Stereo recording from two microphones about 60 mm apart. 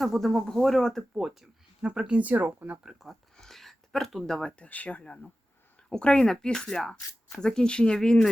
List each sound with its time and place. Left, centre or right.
0.0 s speech: centre
1.2 s speech: centre
1.8 s speech: centre
2.8 s speech: centre
3.3 s a sound: centre
4.5 s speech: left